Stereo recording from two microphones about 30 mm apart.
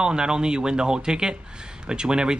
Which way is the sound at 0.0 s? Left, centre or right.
Right.